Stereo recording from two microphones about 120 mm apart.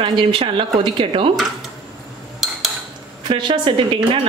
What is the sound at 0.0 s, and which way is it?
A woman's voice, 45° right (ahead or behind).